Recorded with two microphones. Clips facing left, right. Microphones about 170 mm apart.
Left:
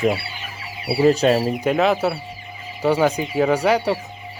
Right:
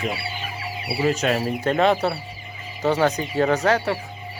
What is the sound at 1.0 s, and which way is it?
Speech, 35° left (ahead or behind).